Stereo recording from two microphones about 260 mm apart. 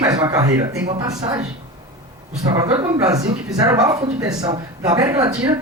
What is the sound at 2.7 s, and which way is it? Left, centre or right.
A man's voice, centre.